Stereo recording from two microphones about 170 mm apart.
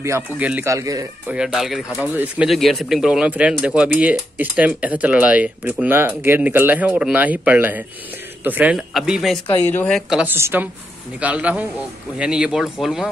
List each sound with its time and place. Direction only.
0.0 s speech: 15° right (ahead or behind)
1.2 s a woman's voice: 5° right (ahead or behind)
9.6 s a woman's voice: 10° left (ahead or behind)